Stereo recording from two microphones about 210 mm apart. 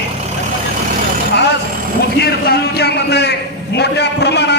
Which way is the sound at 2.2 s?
50° left (ahead or behind).